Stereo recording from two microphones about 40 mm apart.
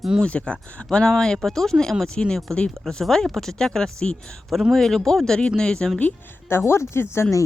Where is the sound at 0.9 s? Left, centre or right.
Centre.